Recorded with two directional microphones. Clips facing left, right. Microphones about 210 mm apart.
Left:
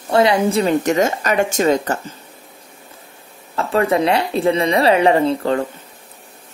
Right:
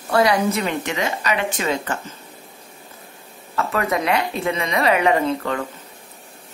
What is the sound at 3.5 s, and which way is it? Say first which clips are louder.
A woman's voice: left 5 dB; 30° left (ahead or behind).